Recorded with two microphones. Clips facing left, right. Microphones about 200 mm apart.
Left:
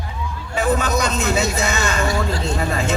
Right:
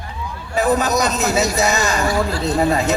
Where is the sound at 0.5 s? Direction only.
40° right (ahead or behind).